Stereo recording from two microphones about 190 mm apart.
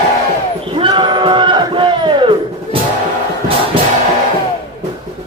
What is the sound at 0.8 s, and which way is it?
Music, 25° right (ahead or behind).